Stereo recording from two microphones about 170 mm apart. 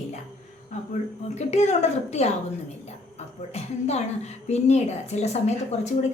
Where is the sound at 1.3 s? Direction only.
40° left (ahead or behind).